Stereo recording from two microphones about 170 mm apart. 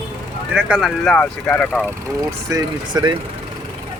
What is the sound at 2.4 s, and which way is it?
Speech, 20° right (ahead or behind).